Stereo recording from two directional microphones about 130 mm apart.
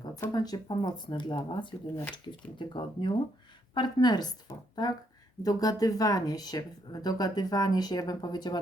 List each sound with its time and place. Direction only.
0.2 s speech: 30° left (ahead or behind)